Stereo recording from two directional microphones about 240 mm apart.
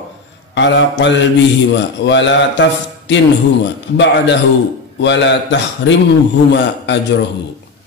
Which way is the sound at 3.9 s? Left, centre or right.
Left.